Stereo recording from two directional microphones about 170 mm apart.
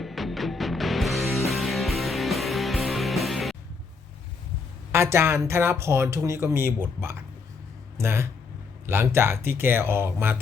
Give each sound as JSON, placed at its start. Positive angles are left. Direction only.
{"t": 0.0, "sound": "music", "side_deg": 0}
{"t": 4.9, "sound": "speech", "side_deg": -15}